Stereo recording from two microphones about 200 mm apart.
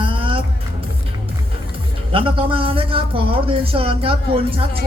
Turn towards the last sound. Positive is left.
turn(degrees=-25)  # may be behind; listen again after turning